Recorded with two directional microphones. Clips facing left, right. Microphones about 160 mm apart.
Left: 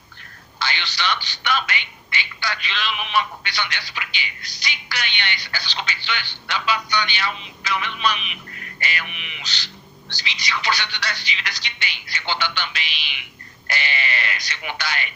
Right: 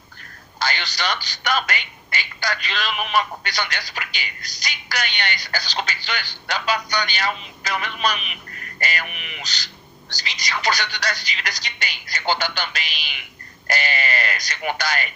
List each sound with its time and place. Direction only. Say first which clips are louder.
0.6 s speech: right 1 dB; 40° right (ahead or behind)